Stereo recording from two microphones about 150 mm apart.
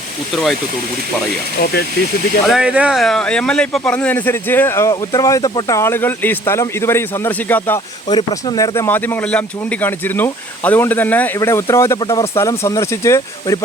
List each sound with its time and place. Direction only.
2.5 s speech: 5° right (ahead or behind); by 7.8 s 10° left (ahead or behind)
8.1 s speech: 25° left (ahead or behind)